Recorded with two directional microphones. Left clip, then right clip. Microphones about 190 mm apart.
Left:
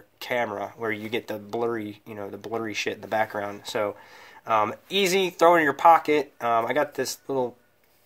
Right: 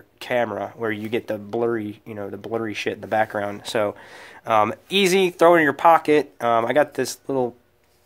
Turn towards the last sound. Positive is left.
turn(degrees=-40)  # may be behind; listen again after turning